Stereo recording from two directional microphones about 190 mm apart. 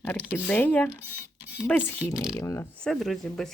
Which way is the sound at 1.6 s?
10° left (ahead or behind).